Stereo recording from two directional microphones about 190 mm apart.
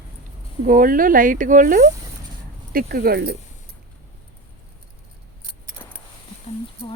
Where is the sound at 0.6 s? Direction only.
45° right (ahead or behind).